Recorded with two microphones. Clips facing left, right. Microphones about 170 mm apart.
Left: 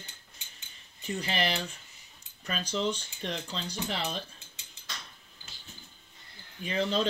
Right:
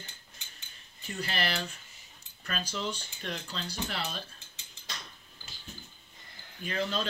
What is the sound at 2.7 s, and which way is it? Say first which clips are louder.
Speech: left 5 dB; 15° left (ahead or behind).